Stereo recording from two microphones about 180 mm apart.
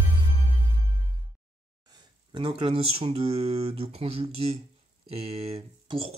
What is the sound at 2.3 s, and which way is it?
Speech, 30° right (ahead or behind).